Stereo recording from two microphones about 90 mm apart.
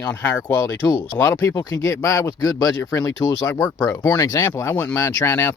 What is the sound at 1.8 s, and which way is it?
A man's voice, 35° left (ahead or behind).